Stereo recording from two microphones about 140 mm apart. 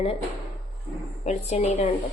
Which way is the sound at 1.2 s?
50° left (ahead or behind).